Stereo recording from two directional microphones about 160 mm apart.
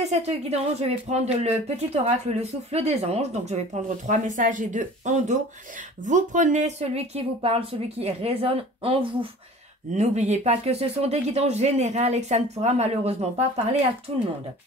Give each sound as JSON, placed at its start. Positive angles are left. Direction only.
{"t": 0.0, "sound": "a woman's voice", "side_deg": -40}
{"t": 9.9, "sound": "speech", "side_deg": -45}